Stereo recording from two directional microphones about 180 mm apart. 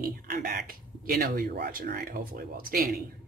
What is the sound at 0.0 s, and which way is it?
Speech, 50° right (ahead or behind).